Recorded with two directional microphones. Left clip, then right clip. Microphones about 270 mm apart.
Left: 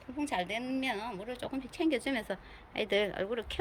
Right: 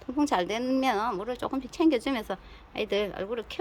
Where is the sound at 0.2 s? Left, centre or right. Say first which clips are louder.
Right 7 dB; centre.